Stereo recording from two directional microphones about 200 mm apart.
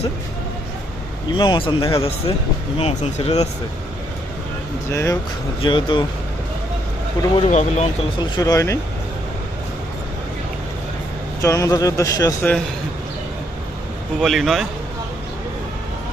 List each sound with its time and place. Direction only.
1.4 s speech: 25° left (ahead or behind)
4.9 s speech: 15° left (ahead or behind)
5.6 s speech: 25° left (ahead or behind)
7.3 s speech: 30° left (ahead or behind)
8.4 s speech: 15° left (ahead or behind)
11.4 s speech: 15° left (ahead or behind)
14.2 s a man's voice: centre (ahead or behind)